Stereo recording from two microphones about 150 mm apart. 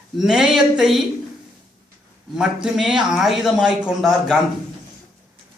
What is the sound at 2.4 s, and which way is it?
Speech, 5° right (ahead or behind).